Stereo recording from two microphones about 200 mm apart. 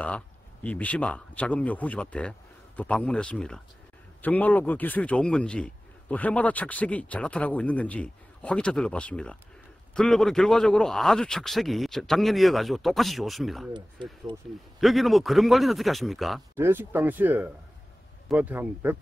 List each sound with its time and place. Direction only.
0.7 s speech: 5° left (ahead or behind)
14.3 s a man's voice: 25° right (ahead or behind)
14.8 s speech: centre (ahead or behind)
16.5 s speech: 10° right (ahead or behind)